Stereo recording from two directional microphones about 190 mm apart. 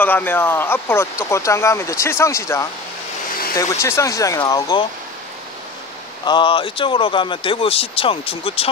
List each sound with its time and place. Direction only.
0.0 s speech: 10° left (ahead or behind)
6.2 s speech: 25° left (ahead or behind)